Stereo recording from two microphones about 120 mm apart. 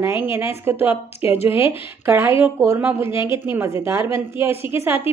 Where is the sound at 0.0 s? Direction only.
20° right (ahead or behind).